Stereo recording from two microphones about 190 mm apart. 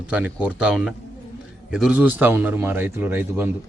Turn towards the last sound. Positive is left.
turn(degrees=-10)  # may be behind; listen again after turning